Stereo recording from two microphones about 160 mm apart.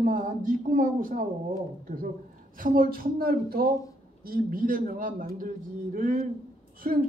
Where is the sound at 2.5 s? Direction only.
60° right (ahead or behind).